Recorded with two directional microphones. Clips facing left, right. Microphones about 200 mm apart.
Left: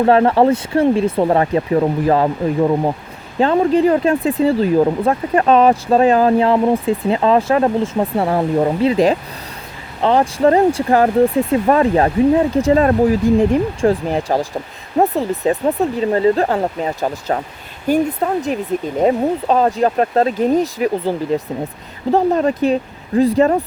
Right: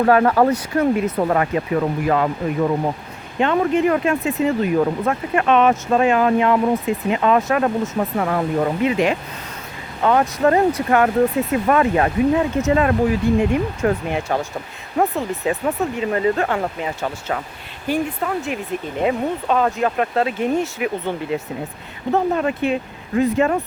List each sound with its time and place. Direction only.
0.0 s speech: 25° left (ahead or behind)